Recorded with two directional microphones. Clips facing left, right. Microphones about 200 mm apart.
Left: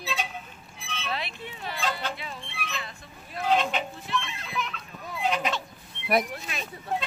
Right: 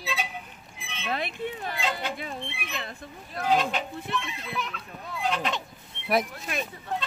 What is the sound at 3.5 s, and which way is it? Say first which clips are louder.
Speech: even; centre (ahead or behind).